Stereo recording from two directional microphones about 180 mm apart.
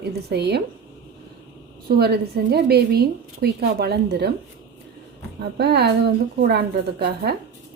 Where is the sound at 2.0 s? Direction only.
60° right (ahead or behind).